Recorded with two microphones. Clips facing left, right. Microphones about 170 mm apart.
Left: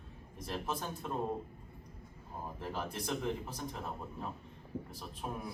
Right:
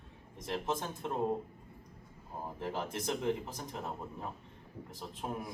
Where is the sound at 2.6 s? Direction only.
20° right (ahead or behind).